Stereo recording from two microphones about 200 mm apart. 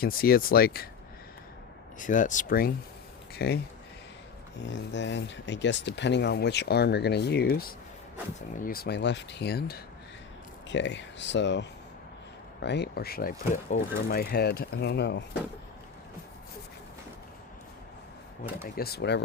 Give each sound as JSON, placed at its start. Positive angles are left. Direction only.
{"t": 0.0, "sound": "speech", "side_deg": 50}
{"t": 2.0, "sound": "speech", "side_deg": 40}
{"t": 4.7, "sound": "speech", "side_deg": 65}
{"t": 8.5, "sound": "speech", "side_deg": 45}
{"t": 10.7, "sound": "speech", "side_deg": 65}
{"t": 12.6, "sound": "speech", "side_deg": 55}
{"t": 18.6, "sound": "speech", "side_deg": 50}